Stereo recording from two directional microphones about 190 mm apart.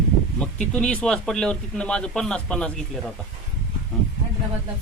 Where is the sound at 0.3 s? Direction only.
5° left (ahead or behind).